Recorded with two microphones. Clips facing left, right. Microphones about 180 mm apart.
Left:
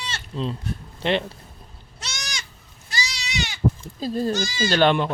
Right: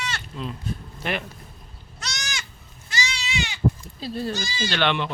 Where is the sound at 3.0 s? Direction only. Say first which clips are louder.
Even; 40° left (ahead or behind).